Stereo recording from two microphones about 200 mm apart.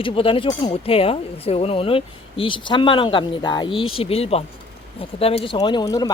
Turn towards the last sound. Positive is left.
turn(degrees=20)  # may be behind; listen again after turning